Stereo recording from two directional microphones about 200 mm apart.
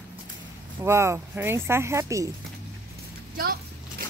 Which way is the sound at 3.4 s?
50° right (ahead or behind).